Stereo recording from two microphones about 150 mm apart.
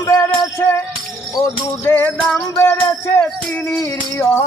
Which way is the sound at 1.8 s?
15° left (ahead or behind).